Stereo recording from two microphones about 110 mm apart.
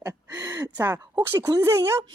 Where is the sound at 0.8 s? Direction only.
20° right (ahead or behind).